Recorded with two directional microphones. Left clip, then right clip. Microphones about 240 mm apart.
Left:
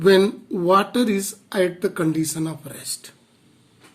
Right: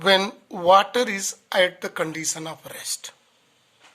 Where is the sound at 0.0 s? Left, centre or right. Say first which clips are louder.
Left 3 dB; right.